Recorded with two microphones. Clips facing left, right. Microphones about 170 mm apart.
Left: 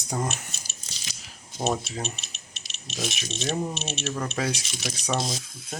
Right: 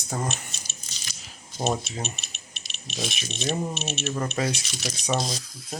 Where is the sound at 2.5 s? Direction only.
90° left.